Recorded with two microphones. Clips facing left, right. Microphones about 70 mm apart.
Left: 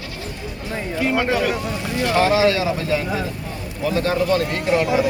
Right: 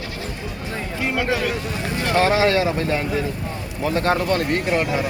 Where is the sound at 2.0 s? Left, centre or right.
Right.